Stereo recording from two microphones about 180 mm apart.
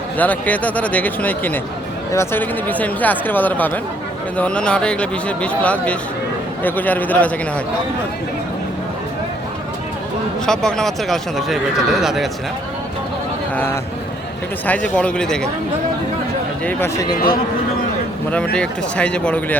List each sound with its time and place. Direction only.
0.2 s speech: 10° left (ahead or behind)
10.4 s speech: 5° left (ahead or behind)
14.7 s speech: 5° left (ahead or behind)
16.6 s speech: 15° left (ahead or behind)
18.5 s speech: 5° left (ahead or behind)